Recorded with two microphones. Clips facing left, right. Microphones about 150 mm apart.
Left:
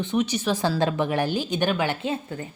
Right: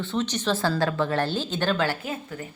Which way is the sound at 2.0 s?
25° left (ahead or behind).